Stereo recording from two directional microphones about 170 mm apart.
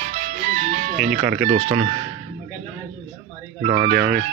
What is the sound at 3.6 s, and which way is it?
Speech, 35° right (ahead or behind).